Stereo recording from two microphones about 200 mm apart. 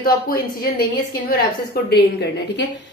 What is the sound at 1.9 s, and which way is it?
Speech, 55° left (ahead or behind).